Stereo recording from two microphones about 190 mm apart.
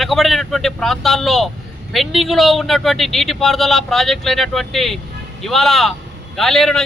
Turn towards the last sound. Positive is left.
turn(degrees=0)  # may be behind; listen again after turning